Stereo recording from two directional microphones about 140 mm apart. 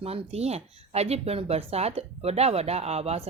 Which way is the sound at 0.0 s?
45° right (ahead or behind).